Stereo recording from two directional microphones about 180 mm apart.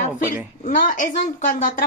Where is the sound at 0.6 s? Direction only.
50° left (ahead or behind).